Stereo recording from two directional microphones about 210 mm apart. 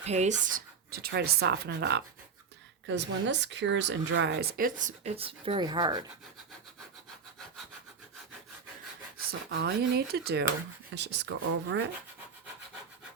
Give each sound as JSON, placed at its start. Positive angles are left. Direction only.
{"t": 0.0, "sound": "speech", "side_deg": -30}
{"t": 9.1, "sound": "speech", "side_deg": -50}